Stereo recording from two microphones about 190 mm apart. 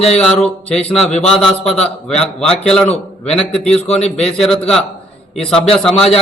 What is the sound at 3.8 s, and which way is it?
Speech, 35° left (ahead or behind).